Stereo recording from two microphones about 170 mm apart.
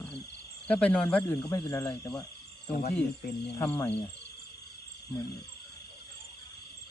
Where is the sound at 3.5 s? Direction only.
15° left (ahead or behind).